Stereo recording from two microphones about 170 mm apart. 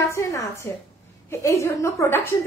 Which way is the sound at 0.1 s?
15° left (ahead or behind).